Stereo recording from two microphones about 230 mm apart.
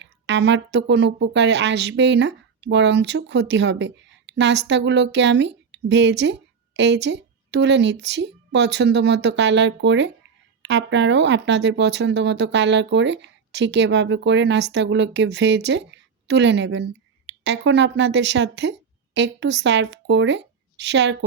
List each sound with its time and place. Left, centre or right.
0.0 s speech: right